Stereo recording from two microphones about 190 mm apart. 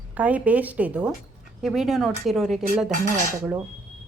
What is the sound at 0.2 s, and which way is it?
Speech, 5° right (ahead or behind).